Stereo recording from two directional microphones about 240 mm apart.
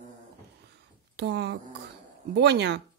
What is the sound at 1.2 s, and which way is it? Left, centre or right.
A woman's voice, right.